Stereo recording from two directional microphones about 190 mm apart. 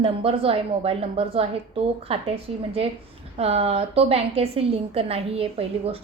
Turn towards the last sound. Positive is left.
turn(degrees=-30)  # may be behind; listen again after turning